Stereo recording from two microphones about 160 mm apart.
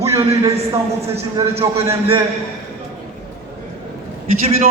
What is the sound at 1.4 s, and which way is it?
Speech, 20° right (ahead or behind).